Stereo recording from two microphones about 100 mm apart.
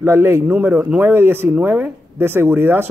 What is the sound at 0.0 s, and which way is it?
A man's voice, 25° right (ahead or behind).